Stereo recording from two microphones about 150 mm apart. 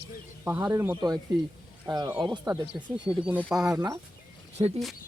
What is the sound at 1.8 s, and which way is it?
Speech, 25° right (ahead or behind).